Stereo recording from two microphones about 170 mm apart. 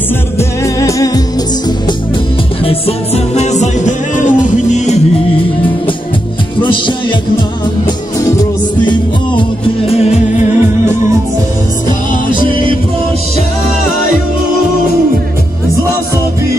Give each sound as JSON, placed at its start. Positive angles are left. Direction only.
{"t": 0.4, "sound": "music", "side_deg": 20}
{"t": 3.3, "sound": "music", "side_deg": 45}
{"t": 8.8, "sound": "music", "side_deg": 25}